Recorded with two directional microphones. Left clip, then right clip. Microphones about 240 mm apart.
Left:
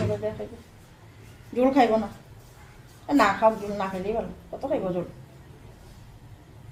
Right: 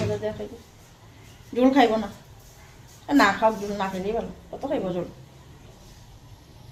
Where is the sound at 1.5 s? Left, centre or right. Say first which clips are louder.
Right 1 dB; centre.